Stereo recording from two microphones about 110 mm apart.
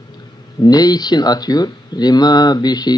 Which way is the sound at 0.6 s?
35° left (ahead or behind).